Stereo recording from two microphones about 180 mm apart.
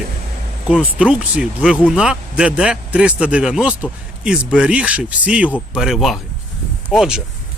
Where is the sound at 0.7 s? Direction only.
5° right (ahead or behind).